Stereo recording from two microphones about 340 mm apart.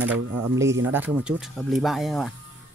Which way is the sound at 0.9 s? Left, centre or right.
Centre.